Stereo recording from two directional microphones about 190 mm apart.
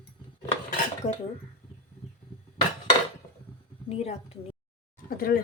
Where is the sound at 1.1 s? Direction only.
35° left (ahead or behind).